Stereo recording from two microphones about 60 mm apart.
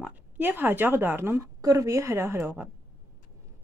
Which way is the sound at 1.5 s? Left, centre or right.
Right.